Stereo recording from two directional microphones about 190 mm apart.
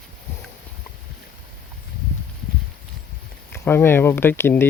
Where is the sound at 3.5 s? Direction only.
10° left (ahead or behind).